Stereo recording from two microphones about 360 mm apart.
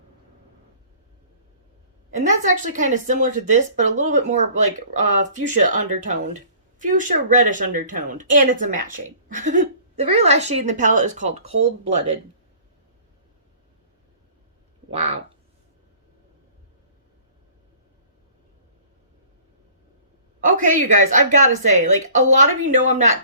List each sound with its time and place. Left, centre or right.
2.1 s speech: centre
14.8 s speech: centre
20.4 s speech: right